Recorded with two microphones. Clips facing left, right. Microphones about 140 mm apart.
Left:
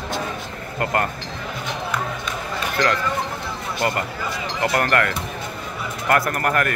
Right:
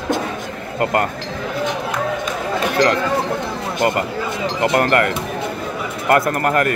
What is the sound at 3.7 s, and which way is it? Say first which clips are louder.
Speech: right 5 dB; 20° right (ahead or behind).